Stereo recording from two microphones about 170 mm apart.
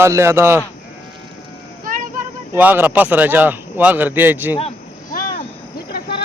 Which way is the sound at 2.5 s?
10° right (ahead or behind).